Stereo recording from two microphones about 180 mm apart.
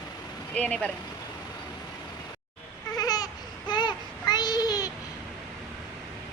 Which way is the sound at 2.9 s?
20° left (ahead or behind).